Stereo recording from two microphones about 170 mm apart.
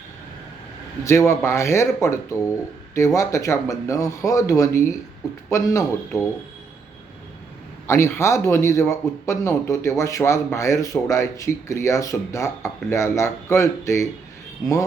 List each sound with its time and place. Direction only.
1.0 s speech: 15° left (ahead or behind)
7.9 s speech: 15° left (ahead or behind)